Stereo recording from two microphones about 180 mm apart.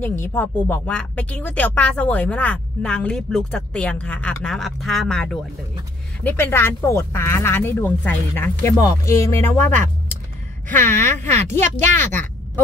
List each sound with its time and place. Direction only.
0.0 s speech: 15° left (ahead or behind)